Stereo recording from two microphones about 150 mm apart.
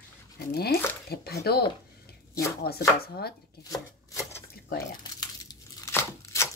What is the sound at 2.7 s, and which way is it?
Speech, 90° left.